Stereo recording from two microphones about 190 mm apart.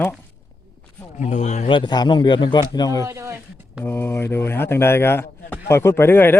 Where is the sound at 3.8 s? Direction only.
10° left (ahead or behind).